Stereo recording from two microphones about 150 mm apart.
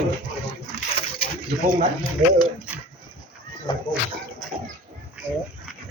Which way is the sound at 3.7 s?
35° left (ahead or behind).